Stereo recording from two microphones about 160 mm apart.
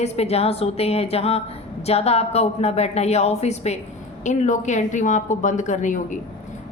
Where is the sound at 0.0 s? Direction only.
40° left (ahead or behind).